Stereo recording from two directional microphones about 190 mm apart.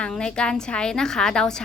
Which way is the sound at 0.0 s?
5° left (ahead or behind).